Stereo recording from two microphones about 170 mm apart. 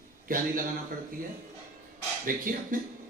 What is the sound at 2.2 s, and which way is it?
Speech, 55° right (ahead or behind).